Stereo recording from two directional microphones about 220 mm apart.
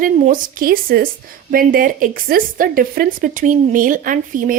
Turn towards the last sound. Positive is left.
turn(degrees=-40)  # may be behind; listen again after turning